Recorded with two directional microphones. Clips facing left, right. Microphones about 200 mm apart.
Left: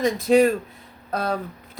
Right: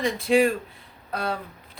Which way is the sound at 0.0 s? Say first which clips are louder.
Left 3 dB; 40° left (ahead or behind).